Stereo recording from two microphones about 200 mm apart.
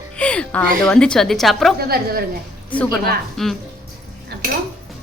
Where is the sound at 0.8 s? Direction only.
5° left (ahead or behind).